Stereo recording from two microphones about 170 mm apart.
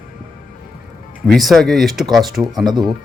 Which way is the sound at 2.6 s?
25° right (ahead or behind).